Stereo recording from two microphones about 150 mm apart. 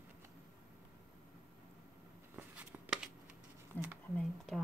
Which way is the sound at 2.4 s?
10° right (ahead or behind).